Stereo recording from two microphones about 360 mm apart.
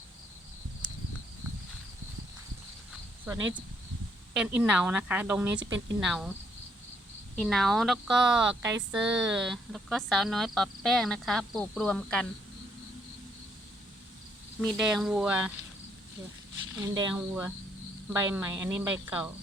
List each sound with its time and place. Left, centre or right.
4.4 s speech: centre
7.3 s speech: centre
14.6 s speech: centre
16.7 s speech: centre